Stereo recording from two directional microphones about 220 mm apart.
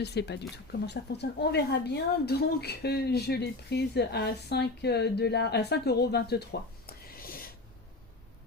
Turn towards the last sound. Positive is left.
turn(degrees=40)  # may be behind; listen again after turning